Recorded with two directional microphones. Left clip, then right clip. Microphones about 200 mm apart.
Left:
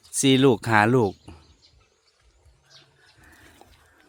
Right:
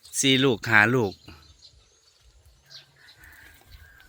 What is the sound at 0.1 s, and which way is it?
Speech, 35° left (ahead or behind).